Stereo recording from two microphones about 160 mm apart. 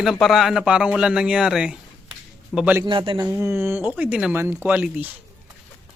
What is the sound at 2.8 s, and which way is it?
Speech, 30° right (ahead or behind).